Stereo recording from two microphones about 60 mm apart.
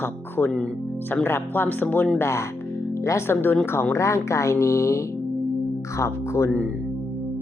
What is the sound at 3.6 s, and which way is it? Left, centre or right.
Speech, left.